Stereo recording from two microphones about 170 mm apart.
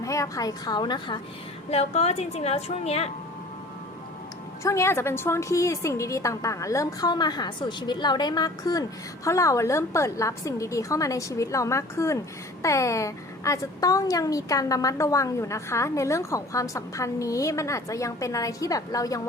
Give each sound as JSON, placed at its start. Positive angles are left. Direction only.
{"t": 0.0, "sound": "a woman's voice", "side_deg": 20}
{"t": 1.7, "sound": "a woman's voice", "side_deg": 40}
{"t": 4.6, "sound": "a woman's voice", "side_deg": 15}